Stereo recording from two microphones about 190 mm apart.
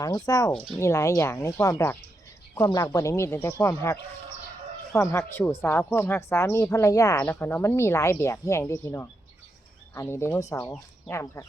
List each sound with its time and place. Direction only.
0.0 s a woman's voice: 20° left (ahead or behind)